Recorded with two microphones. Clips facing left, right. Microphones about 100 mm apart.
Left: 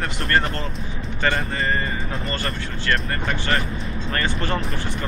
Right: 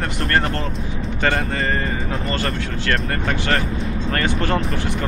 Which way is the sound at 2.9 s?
60° right (ahead or behind).